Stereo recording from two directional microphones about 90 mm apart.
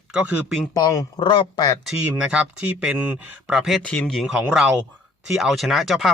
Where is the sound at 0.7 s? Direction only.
40° left (ahead or behind).